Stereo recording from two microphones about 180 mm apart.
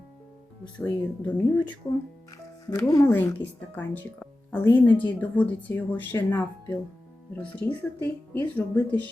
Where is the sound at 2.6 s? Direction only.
20° left (ahead or behind).